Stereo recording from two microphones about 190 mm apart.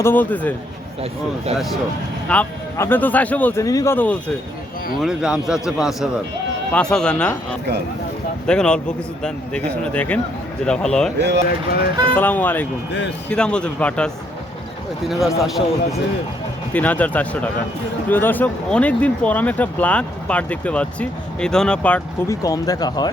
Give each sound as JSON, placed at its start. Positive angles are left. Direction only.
{"t": 0.0, "sound": "speech", "side_deg": 10}
{"t": 2.3, "sound": "speech", "side_deg": 10}
{"t": 4.9, "sound": "speech", "side_deg": -5}
{"t": 8.4, "sound": "speech", "side_deg": 5}
{"t": 11.2, "sound": "speech", "side_deg": -65}
{"t": 11.4, "sound": "speech", "side_deg": 55}
{"t": 12.1, "sound": "speech", "side_deg": 10}
{"t": 12.9, "sound": "speech", "side_deg": 65}
{"t": 13.3, "sound": "speech", "side_deg": 5}
{"t": 22.4, "sound": "speech", "side_deg": 20}